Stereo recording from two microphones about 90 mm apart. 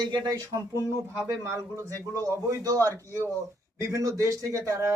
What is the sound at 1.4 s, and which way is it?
A man's voice, 35° right (ahead or behind).